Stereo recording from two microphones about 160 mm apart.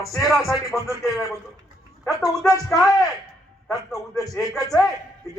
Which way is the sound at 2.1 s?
20° left (ahead or behind).